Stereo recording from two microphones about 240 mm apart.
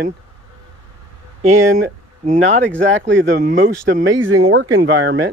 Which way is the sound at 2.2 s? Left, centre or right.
Right.